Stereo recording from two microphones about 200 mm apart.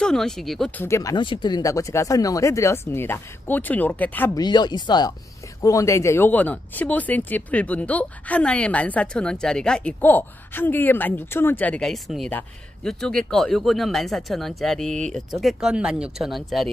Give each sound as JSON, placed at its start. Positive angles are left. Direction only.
{"t": 0.0, "sound": "speech", "side_deg": 5}
{"t": 4.4, "sound": "speech", "side_deg": 20}